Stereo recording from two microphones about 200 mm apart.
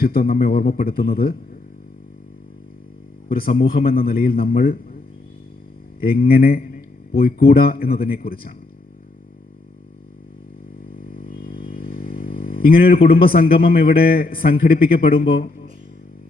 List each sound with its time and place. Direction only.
0.1 s speech: 45° left (ahead or behind)
3.4 s speech: 50° left (ahead or behind)
6.0 s speech: 45° left (ahead or behind)
10.9 s speech: 45° left (ahead or behind)